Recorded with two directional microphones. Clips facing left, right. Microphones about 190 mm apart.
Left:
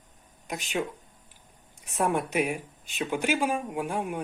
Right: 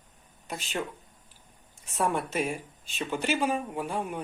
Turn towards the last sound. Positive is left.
turn(degrees=10)  # may be behind; listen again after turning